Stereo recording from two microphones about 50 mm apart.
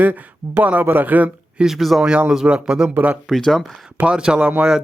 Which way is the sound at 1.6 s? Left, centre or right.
Centre.